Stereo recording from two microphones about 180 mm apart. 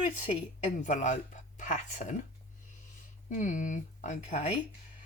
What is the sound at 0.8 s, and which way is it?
A woman's voice, 45° left (ahead or behind).